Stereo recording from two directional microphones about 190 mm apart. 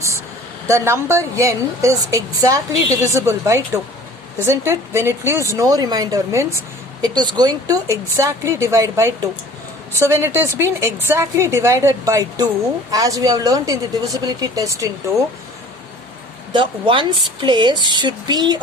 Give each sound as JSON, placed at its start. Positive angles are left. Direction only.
{"t": 0.7, "sound": "a woman's voice", "side_deg": -15}
{"t": 16.5, "sound": "a woman's voice", "side_deg": -25}